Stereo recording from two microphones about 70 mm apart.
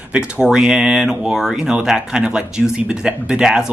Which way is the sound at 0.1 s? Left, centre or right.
Centre.